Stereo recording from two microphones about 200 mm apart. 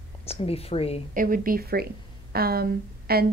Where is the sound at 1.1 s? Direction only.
45° right (ahead or behind).